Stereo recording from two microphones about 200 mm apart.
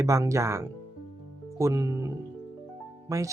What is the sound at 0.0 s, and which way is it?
Speech, 15° right (ahead or behind).